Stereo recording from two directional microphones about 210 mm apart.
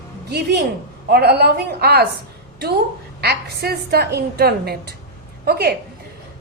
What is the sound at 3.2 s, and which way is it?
A woman's voice, 50° right (ahead or behind).